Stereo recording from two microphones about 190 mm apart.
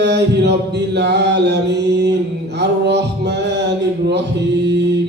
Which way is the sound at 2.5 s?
65° right (ahead or behind).